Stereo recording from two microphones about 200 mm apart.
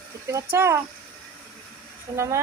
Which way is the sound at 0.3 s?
15° right (ahead or behind).